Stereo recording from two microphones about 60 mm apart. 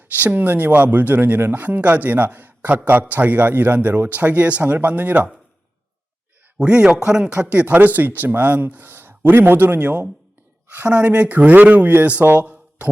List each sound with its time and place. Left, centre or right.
0.2 s a man's voice: right
6.6 s a man's voice: centre
12.2 s a sound: right